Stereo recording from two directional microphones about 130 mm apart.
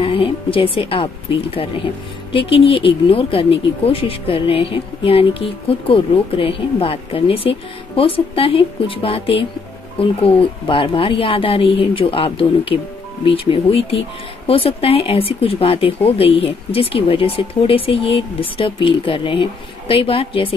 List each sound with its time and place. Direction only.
0.0 s speech: 45° left (ahead or behind)